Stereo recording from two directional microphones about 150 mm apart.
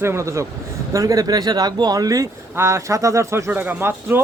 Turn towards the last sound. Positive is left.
turn(degrees=-15)  # may be behind; listen again after turning